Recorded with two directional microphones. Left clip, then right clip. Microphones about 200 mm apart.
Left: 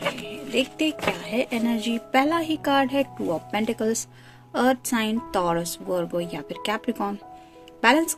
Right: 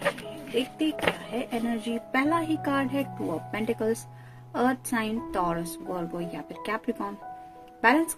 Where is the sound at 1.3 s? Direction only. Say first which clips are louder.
Left 5 dB; 45° left (ahead or behind).